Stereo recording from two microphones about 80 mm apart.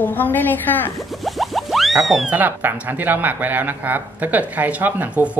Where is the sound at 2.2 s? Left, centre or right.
Right.